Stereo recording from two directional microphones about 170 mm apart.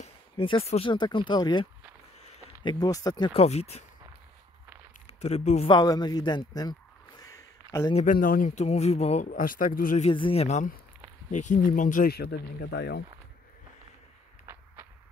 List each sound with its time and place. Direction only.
0.0 s speech: 35° left (ahead or behind)
3.3 s speech: 40° left (ahead or behind)
5.0 s speech: 40° left (ahead or behind)
5.7 s speech: 25° left (ahead or behind)
6.5 s a sound: 25° left (ahead or behind)
7.9 s speech: 50° left (ahead or behind)
9.3 s speech: 55° left (ahead or behind)
10.0 s speech: 35° left (ahead or behind); by 13.0 s 80° left